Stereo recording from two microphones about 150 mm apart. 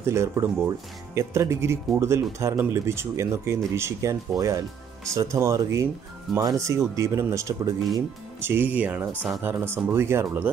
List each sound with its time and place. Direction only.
0.0 s speech: 20° right (ahead or behind)